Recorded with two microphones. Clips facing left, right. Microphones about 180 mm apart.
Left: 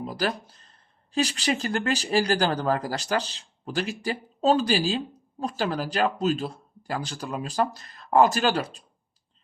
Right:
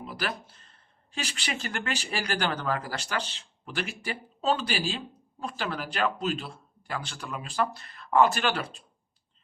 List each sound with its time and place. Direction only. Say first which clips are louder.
0.0 s speech: left 6 dB; 35° left (ahead or behind)